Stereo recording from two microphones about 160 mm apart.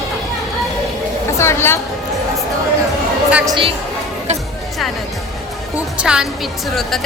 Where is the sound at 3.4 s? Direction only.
30° right (ahead or behind).